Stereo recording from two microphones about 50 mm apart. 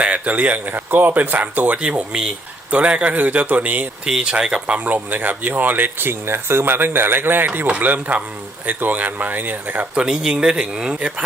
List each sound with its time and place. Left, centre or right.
0.0 s speech: right
4.0 s speech: centre; by 9.8 s right
9.9 s speech: right